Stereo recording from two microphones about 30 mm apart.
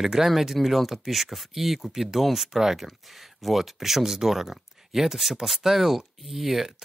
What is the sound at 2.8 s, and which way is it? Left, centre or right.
Speech, centre.